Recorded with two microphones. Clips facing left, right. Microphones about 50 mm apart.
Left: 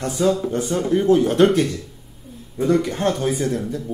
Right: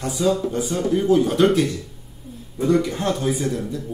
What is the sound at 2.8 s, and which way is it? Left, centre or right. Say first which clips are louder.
Speech: left 2 dB; left.